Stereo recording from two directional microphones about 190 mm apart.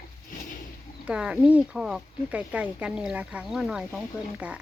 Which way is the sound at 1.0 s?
5° right (ahead or behind).